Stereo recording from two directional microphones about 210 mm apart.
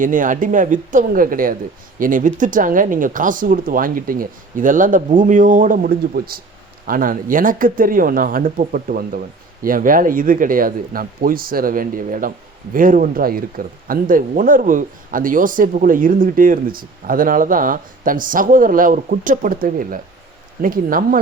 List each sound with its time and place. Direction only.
0.0 s speech: 40° right (ahead or behind)
20.6 s speech: 40° right (ahead or behind)